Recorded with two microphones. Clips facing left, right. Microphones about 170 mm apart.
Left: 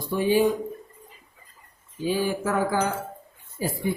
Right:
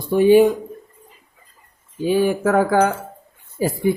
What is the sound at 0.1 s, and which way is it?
Speech, 65° right (ahead or behind).